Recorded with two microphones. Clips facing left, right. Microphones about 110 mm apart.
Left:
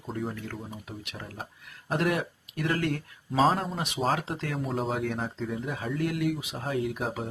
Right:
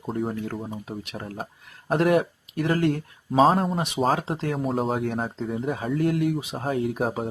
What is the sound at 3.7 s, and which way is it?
Speech, 25° right (ahead or behind).